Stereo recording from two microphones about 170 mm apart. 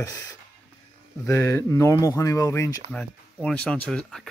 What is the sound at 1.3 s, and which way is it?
Speech, 15° left (ahead or behind).